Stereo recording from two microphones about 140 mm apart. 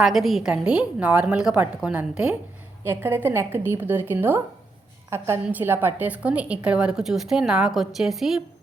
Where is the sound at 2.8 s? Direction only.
15° right (ahead or behind).